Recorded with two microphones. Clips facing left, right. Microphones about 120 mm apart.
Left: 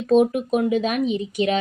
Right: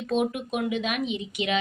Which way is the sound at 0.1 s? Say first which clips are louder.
Left 9 dB; 40° left (ahead or behind).